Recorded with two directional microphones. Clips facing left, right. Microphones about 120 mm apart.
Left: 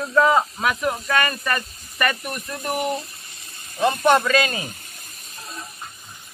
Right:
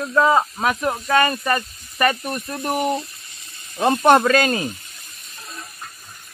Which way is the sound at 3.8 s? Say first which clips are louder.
Right 3 dB; 45° right (ahead or behind).